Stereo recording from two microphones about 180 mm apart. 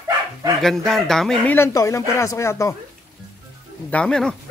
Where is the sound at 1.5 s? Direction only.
15° left (ahead or behind).